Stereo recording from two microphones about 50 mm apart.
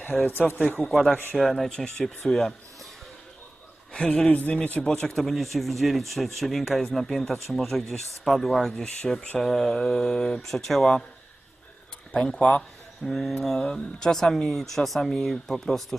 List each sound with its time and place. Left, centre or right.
0.3 s speech: left
0.8 s speech: centre
1.7 s speech: centre
3.9 s speech: centre
4.3 s speech: left
4.9 s speech: centre
12.1 s speech: centre
13.1 s speech: centre